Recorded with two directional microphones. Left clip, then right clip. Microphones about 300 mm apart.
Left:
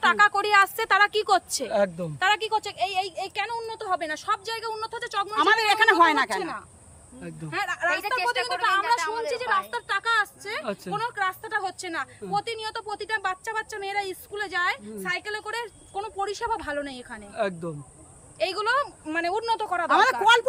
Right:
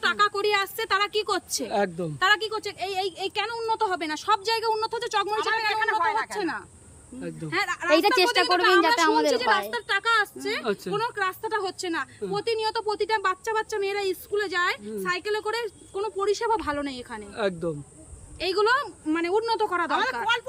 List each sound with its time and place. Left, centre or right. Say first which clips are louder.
0.0 s speech: left 3 dB; centre
5.4 s speech: left 5 dB; left
7.2 s speech: right 3 dB; centre
7.9 s a woman's voice: right 5 dB; right
9.7 s speech: right 1 dB; centre
19.9 s speech: left 6 dB; centre